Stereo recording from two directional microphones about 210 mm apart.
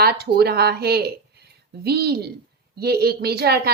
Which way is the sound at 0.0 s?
45° right (ahead or behind).